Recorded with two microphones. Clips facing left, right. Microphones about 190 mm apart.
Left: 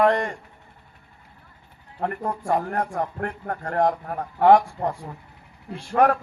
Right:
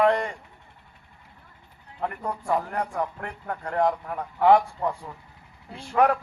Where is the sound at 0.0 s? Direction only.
45° left (ahead or behind).